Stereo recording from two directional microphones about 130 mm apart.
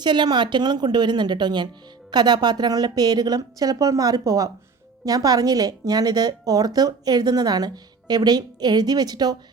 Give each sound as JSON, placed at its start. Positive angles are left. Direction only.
{"t": 0.0, "sound": "a woman's voice", "side_deg": -35}